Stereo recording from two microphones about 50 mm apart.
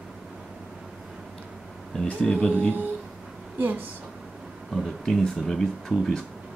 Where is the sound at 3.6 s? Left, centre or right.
Right.